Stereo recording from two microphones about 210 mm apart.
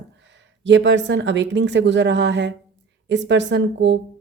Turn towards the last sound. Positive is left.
turn(degrees=-55)  # may be behind; listen again after turning